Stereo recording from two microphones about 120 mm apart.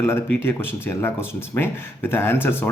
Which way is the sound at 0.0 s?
20° left (ahead or behind).